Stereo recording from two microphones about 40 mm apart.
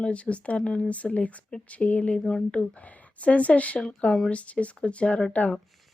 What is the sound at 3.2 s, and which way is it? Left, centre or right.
Speech, left.